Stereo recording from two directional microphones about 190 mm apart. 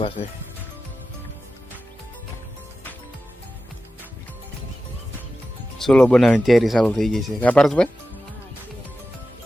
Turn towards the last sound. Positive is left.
turn(degrees=5)  # may be behind; listen again after turning